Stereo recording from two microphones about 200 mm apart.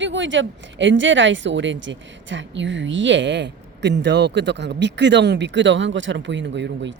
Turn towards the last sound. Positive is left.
turn(degrees=-60)  # may be behind; listen again after turning